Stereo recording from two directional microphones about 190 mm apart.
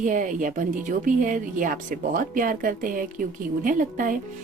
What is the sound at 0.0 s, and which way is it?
A woman's voice, 45° right (ahead or behind).